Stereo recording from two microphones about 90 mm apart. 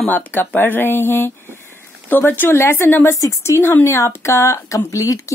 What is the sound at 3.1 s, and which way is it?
Speech, 35° left (ahead or behind).